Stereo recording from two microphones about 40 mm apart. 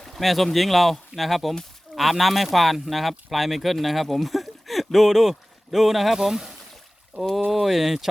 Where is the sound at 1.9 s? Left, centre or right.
Centre.